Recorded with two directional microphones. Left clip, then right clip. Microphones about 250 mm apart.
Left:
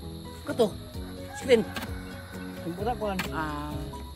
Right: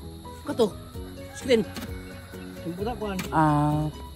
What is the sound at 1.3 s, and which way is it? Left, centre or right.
Music, centre.